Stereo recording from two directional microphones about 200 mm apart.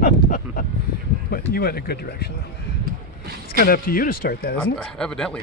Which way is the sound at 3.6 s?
50° left (ahead or behind).